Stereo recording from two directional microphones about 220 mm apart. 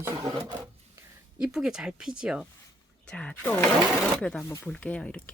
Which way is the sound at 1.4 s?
5° right (ahead or behind).